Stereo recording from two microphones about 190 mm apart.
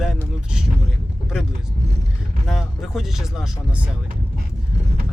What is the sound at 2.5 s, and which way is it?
Speech, centre (ahead or behind).